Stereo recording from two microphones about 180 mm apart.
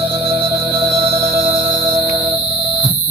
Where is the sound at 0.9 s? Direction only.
15° right (ahead or behind).